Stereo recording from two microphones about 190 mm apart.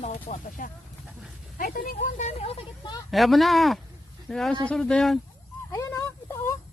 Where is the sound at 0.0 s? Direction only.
40° left (ahead or behind).